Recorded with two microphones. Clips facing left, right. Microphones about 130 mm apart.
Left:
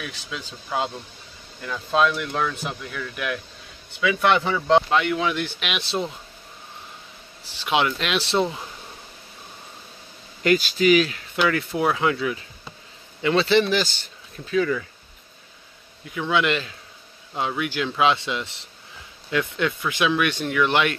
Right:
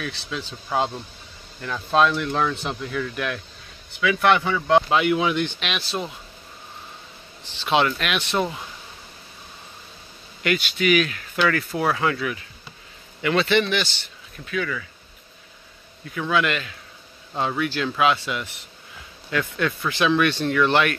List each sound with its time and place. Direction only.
0.0 s speech: 10° left (ahead or behind)
2.0 s speech: 5° left (ahead or behind)
4.0 s speech: 20° left (ahead or behind)
4.8 s speech: 10° right (ahead or behind)
5.3 s speech: 5° left (ahead or behind)
7.4 s speech: 10° left (ahead or behind)
8.0 s speech: 30° left (ahead or behind)
10.4 s speech: 35° left (ahead or behind)
11.3 s speech: 15° left (ahead or behind); by 14.9 s 30° left (ahead or behind)
16.1 s speech: 20° left (ahead or behind)
17.4 s speech: 10° left (ahead or behind)
17.9 s speech: 25° left (ahead or behind)